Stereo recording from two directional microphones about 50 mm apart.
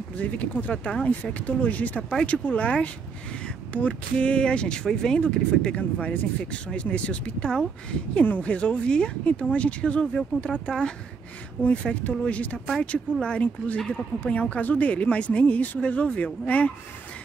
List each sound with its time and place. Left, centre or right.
0.2 s speech: left